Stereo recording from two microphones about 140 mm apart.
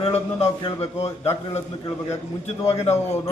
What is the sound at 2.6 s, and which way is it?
Speech, 45° left (ahead or behind).